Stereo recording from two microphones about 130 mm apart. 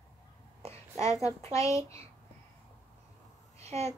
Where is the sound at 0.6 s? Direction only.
55° right (ahead or behind).